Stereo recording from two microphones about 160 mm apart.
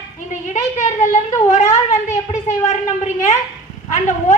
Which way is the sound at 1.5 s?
50° left (ahead or behind).